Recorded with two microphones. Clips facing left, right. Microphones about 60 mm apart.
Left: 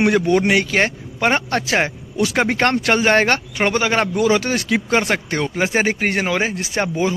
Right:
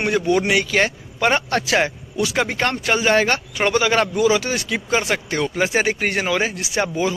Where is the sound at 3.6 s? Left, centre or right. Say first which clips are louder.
Right 1 dB; left.